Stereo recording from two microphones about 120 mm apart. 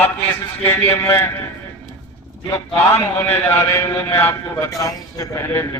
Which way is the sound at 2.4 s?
25° left (ahead or behind).